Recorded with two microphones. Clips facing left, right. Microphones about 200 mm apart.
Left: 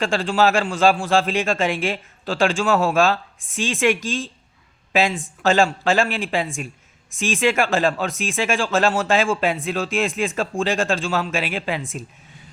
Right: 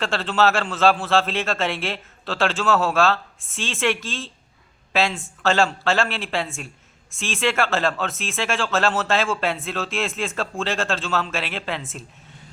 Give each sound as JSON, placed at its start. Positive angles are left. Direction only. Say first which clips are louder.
{"t": 0.0, "sound": "a man's voice", "louder": "left 2 dB", "side_deg": 15}